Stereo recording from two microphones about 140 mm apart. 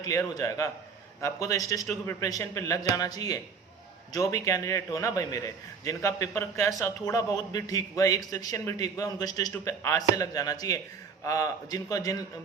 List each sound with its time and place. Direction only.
0.0 s a man's voice: 25° left (ahead or behind)